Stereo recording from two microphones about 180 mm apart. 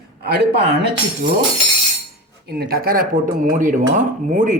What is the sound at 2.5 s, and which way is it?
Speech, 60° right (ahead or behind).